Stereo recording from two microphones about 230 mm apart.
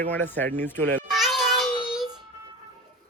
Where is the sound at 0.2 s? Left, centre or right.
Centre.